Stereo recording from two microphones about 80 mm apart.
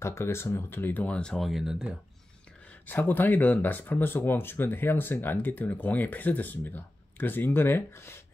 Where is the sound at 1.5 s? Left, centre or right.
Centre.